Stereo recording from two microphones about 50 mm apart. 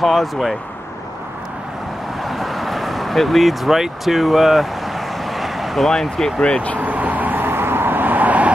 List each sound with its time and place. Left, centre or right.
0.0 s speech: centre
2.2 s vehicle: centre
5.9 s speech: centre
6.8 s vehicle: right